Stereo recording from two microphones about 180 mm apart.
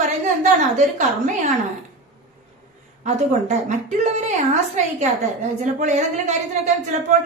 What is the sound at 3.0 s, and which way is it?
A woman's voice, 40° right (ahead or behind).